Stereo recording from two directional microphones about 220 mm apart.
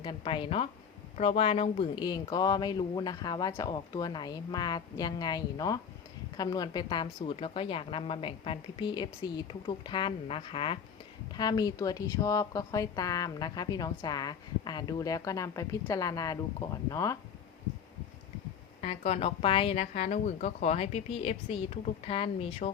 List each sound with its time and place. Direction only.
0.0 s a woman's voice: 20° left (ahead or behind)
18.8 s speech: 30° left (ahead or behind)